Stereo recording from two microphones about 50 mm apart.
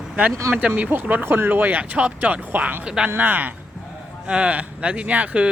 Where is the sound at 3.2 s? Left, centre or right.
Right.